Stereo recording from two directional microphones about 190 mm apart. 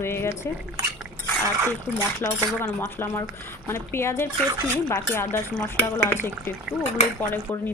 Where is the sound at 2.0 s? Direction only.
15° left (ahead or behind).